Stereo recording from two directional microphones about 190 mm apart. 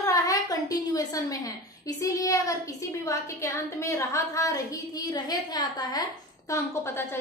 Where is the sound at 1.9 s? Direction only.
20° left (ahead or behind).